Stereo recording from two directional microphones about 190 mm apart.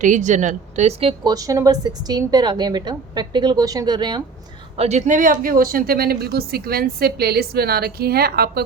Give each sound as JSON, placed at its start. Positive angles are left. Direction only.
{"t": 0.0, "sound": "a woman's voice", "side_deg": -40}
{"t": 4.8, "sound": "a woman's voice", "side_deg": -35}